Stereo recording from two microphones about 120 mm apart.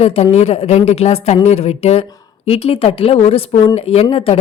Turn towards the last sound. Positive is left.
turn(degrees=55)  # may be behind; listen again after turning